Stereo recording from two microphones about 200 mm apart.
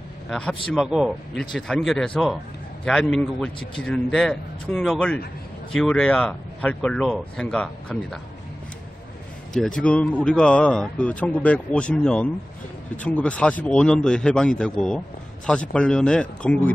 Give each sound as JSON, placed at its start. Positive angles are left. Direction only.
{"t": 0.3, "sound": "speech", "side_deg": 5}
{"t": 9.5, "sound": "speech", "side_deg": 5}
{"t": 15.7, "sound": "speech", "side_deg": 5}